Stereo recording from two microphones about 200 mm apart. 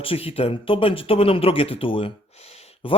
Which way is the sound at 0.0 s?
30° left (ahead or behind).